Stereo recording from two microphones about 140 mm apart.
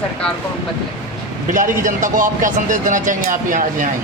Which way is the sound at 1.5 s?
65° right (ahead or behind).